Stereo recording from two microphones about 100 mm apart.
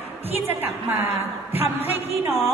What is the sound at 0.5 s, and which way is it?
A woman's voice, 20° right (ahead or behind).